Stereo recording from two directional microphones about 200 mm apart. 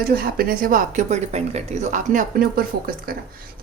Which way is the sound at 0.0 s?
50° right (ahead or behind).